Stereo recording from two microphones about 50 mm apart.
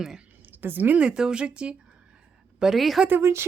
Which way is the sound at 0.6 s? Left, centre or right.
Right.